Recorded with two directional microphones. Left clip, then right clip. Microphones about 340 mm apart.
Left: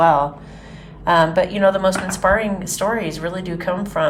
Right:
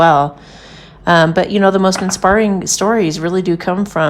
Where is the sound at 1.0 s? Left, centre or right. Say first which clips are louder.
Right 4 dB; centre.